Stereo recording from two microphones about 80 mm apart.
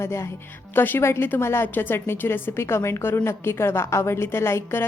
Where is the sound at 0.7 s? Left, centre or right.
Left.